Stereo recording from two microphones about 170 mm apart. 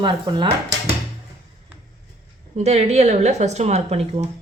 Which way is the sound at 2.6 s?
40° right (ahead or behind).